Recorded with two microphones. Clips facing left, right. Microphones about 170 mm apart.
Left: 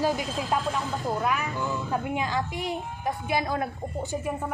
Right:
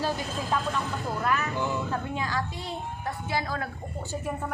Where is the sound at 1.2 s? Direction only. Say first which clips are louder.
Even; 10° left (ahead or behind).